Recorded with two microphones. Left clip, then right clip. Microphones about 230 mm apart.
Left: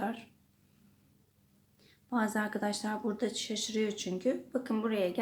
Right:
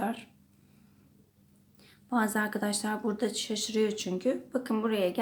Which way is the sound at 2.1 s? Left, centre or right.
Centre.